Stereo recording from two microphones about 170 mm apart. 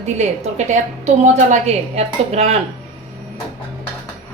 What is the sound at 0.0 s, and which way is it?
A woman's voice, 40° right (ahead or behind).